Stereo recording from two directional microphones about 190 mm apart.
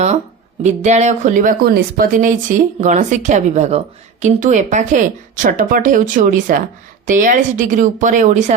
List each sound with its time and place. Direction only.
0.6 s speech: 35° right (ahead or behind)